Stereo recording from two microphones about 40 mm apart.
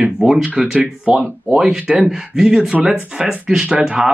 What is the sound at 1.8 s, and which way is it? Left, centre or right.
Speech, right.